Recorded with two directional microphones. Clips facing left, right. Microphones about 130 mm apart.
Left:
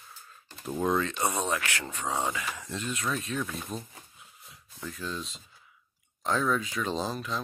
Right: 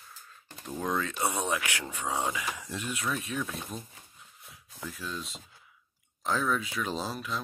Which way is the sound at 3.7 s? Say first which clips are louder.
Left 3 dB; 35° left (ahead or behind).